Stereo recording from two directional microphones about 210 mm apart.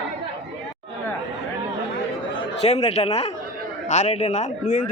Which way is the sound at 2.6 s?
30° left (ahead or behind).